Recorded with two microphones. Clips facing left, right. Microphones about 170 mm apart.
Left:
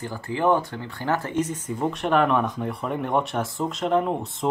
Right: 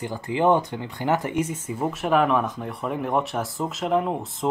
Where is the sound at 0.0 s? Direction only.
20° right (ahead or behind).